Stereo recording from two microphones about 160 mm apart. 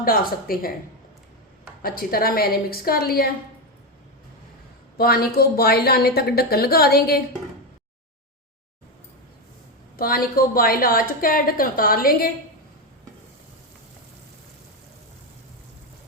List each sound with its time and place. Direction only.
0.0 s a woman's voice: 65° left (ahead or behind)
1.8 s a woman's voice: 65° left (ahead or behind)
4.9 s a woman's voice: 75° left (ahead or behind)
10.0 s a woman's voice: 65° left (ahead or behind)